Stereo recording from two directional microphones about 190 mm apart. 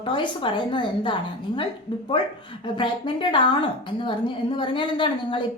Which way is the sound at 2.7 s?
25° left (ahead or behind).